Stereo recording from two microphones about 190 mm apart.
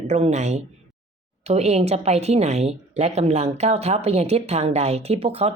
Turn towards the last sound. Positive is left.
turn(degrees=-30)  # may be behind; listen again after turning